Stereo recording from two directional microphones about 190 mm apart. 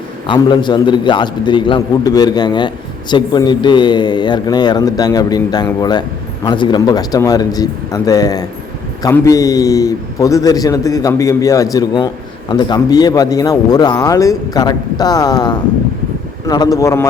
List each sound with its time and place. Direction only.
0.3 s a man's voice: 25° left (ahead or behind)